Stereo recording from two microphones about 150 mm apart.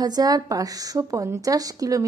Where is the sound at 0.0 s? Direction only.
25° right (ahead or behind).